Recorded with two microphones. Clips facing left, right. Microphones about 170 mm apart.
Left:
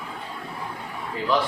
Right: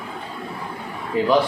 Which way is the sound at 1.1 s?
15° right (ahead or behind).